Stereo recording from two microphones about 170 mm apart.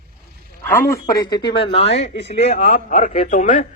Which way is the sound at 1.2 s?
25° left (ahead or behind).